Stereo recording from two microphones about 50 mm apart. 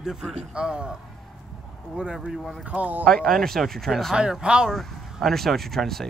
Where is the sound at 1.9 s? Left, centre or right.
Centre.